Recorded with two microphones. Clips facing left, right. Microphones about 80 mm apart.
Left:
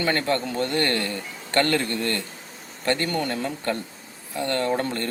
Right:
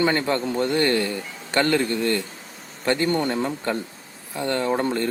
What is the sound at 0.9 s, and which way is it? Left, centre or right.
A man's voice, centre.